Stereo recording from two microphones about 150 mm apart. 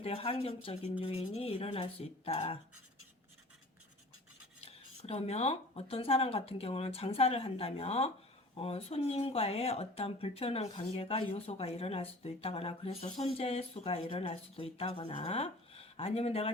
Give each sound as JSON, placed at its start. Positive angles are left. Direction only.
{"t": 0.0, "sound": "speech", "side_deg": 40}
{"t": 4.6, "sound": "speech", "side_deg": 45}